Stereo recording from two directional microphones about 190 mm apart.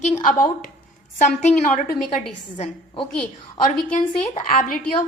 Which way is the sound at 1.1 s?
40° left (ahead or behind).